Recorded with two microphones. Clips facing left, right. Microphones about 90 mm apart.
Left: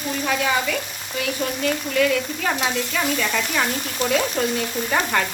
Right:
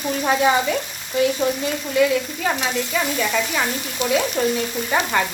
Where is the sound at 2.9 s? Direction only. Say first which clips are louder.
Right 1 dB; 5° right (ahead or behind).